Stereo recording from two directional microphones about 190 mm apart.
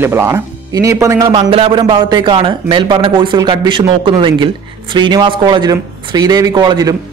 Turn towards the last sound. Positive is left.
turn(degrees=-20)  # may be behind; listen again after turning